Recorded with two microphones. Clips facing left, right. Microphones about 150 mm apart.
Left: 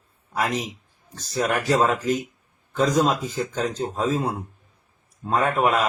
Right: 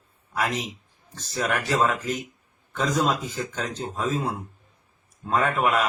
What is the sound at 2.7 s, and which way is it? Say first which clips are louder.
Speech: left 4 dB; 10° left (ahead or behind).